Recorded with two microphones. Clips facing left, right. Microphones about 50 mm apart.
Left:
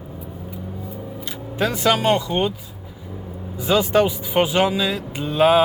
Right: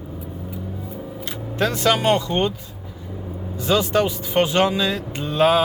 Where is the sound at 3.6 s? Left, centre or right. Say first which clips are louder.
Left 2 dB; centre.